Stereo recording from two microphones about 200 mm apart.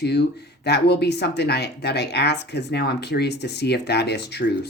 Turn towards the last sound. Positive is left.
turn(degrees=55)  # may be behind; listen again after turning